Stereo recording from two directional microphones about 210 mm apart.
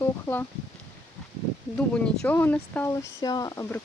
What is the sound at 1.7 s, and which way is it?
Speech, 5° left (ahead or behind).